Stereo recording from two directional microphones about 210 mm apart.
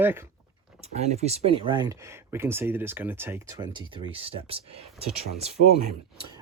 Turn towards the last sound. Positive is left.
turn(degrees=-30)  # may be behind; listen again after turning